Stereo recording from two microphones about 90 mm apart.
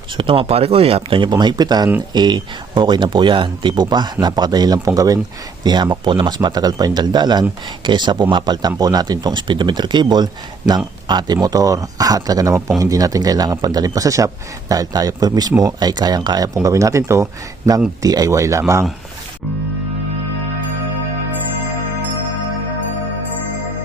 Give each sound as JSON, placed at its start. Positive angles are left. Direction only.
{"t": 0.2, "sound": "speech", "side_deg": -80}
{"t": 1.3, "sound": "speech", "side_deg": -55}
{"t": 5.6, "sound": "speech", "side_deg": -55}
{"t": 10.6, "sound": "speech", "side_deg": -10}
{"t": 11.1, "sound": "speech", "side_deg": -50}
{"t": 11.3, "sound": "speech", "side_deg": -40}
{"t": 16.6, "sound": "speech", "side_deg": -35}